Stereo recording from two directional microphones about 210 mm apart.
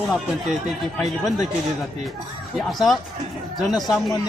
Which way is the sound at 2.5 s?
Centre (ahead or behind).